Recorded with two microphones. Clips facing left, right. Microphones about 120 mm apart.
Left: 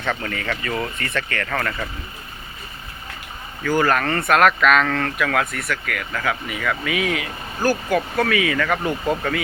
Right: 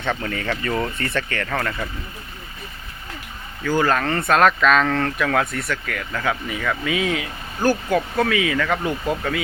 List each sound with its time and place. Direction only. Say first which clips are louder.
0.0 s speech: right 1 dB; 20° right (ahead or behind)
1.5 s speech: even; 15° right (ahead or behind)
3.6 s speech: left 1 dB; 15° right (ahead or behind)
4.3 s speech: even; 25° right (ahead or behind)